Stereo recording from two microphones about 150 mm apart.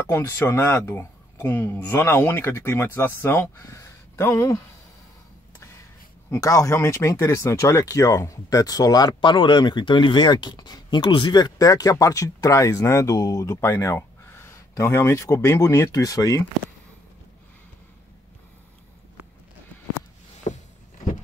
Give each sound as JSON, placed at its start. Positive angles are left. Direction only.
{"t": 0.1, "sound": "speech", "side_deg": 20}
{"t": 6.3, "sound": "speech", "side_deg": 20}
{"t": 20.5, "sound": "a sound", "side_deg": 50}